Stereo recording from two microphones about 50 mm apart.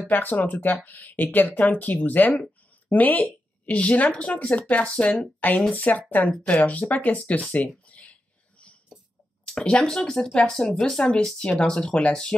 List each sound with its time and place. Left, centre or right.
0.1 s a woman's voice: left
5.7 s speech: left
7.9 s a sound: left
9.5 s speech: left
9.8 s speech: centre
11.9 s speech: left